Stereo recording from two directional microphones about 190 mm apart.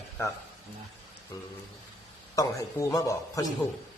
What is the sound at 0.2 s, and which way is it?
Speech, 15° left (ahead or behind).